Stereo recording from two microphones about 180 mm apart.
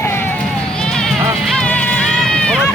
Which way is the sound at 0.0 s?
15° left (ahead or behind).